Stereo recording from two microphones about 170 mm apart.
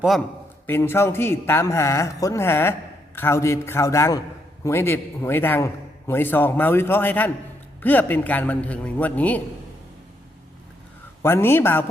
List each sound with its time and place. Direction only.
0.7 s a man's voice: 15° left (ahead or behind)
11.2 s a man's voice: 15° left (ahead or behind)